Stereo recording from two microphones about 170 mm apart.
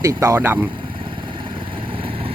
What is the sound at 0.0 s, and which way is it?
Speech, 20° right (ahead or behind).